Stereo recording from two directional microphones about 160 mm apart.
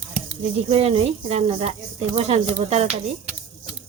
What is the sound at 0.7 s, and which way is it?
Speech, 35° right (ahead or behind).